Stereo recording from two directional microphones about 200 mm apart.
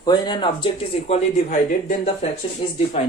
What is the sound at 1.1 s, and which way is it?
Speech, 35° left (ahead or behind).